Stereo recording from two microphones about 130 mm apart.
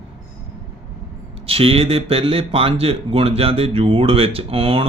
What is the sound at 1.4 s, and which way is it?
Speech, 45° right (ahead or behind).